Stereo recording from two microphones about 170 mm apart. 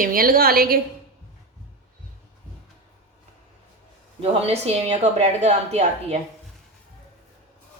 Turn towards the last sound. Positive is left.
turn(degrees=-40)  # may be behind; listen again after turning